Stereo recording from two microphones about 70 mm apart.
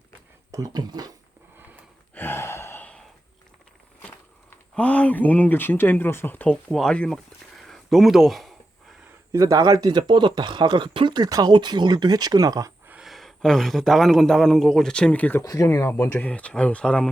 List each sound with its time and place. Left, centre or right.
0.5 s speech: right
2.1 s sigh: left
4.8 s speech: centre; by 6.4 s left
6.4 s speech: centre
7.6 s a sound: centre
9.3 s speech: right
13.0 s a man's voice: centre; by 15.4 s left
15.4 s speech: left
16.1 s speech: centre